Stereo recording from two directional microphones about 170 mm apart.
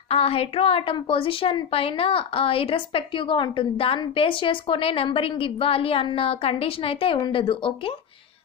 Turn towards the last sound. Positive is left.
turn(degrees=30)  # may be behind; listen again after turning